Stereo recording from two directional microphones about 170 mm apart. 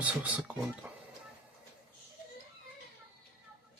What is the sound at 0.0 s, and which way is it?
Speech, 10° right (ahead or behind).